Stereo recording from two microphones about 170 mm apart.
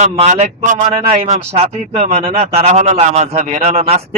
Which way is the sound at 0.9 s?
30° right (ahead or behind).